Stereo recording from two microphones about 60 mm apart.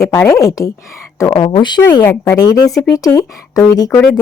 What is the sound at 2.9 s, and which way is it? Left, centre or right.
Speech, left.